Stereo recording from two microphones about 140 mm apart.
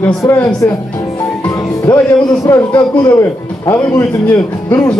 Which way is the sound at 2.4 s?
20° left (ahead or behind).